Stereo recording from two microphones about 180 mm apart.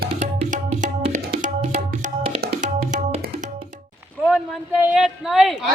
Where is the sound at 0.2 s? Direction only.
45° right (ahead or behind).